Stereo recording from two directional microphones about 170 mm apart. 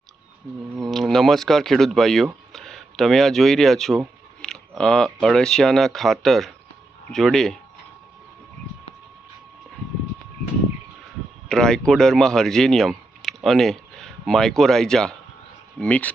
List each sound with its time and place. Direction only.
0.8 s speech: centre (ahead or behind)
11.4 s a sound: 5° left (ahead or behind)
11.9 s speech: 5° left (ahead or behind)